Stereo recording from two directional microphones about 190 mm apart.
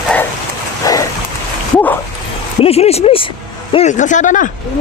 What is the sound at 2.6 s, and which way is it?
Speech, 30° left (ahead or behind).